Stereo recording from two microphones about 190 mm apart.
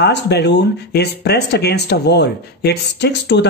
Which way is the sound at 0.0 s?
65° left (ahead or behind).